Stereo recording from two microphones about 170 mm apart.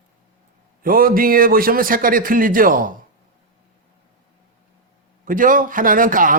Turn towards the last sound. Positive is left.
turn(degrees=-50)  # may be behind; listen again after turning